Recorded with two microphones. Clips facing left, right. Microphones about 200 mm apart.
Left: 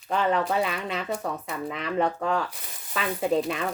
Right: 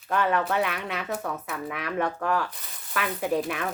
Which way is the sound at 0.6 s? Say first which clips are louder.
Left 1 dB; 65° right (ahead or behind).